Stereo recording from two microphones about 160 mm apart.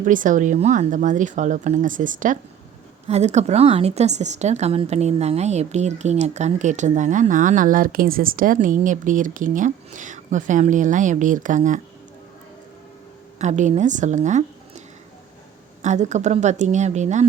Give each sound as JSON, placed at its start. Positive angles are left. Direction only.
{"t": 0.0, "sound": "a woman's voice", "side_deg": -55}
{"t": 3.1, "sound": "a woman's voice", "side_deg": -45}
{"t": 13.4, "sound": "a woman's voice", "side_deg": -50}
{"t": 15.8, "sound": "a woman's voice", "side_deg": -50}